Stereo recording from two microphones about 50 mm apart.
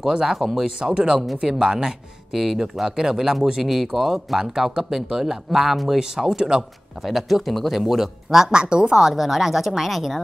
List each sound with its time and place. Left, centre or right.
0.0 s speech: centre
0.7 s speech: centre
8.9 s speech: centre